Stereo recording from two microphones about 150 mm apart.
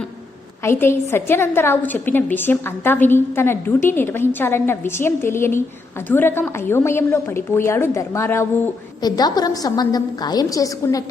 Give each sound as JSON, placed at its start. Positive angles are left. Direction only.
{"t": 0.6, "sound": "a woman's voice", "side_deg": 15}
{"t": 9.0, "sound": "a woman's voice", "side_deg": 25}